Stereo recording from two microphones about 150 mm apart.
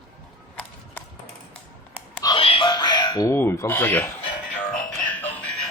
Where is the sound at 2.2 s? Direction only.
35° left (ahead or behind); by 4.0 s 15° left (ahead or behind).